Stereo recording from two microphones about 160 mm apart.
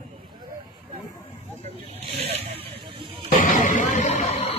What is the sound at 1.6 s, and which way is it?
Snake, 40° right (ahead or behind).